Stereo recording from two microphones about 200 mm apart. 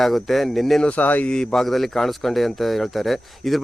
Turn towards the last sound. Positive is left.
turn(degrees=0)  # may be behind; listen again after turning